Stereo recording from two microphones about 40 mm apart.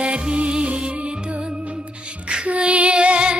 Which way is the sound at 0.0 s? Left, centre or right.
Right.